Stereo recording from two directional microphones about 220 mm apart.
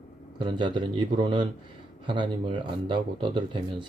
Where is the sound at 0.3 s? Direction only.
20° right (ahead or behind).